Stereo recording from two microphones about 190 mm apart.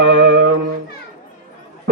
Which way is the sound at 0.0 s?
65° right (ahead or behind).